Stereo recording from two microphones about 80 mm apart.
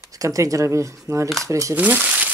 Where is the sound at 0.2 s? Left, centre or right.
Right.